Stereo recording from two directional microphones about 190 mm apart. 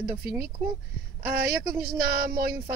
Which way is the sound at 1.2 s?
50° right (ahead or behind).